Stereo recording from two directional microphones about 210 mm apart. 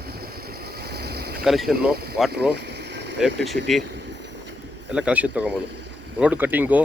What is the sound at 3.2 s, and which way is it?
Speech, centre (ahead or behind).